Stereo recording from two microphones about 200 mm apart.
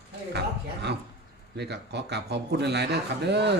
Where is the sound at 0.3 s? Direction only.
55° right (ahead or behind).